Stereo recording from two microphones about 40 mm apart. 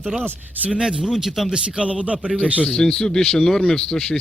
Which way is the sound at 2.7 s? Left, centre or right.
Centre.